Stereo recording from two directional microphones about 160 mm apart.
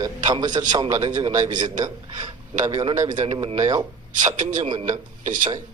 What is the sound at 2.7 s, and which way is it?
A man's voice, 25° right (ahead or behind).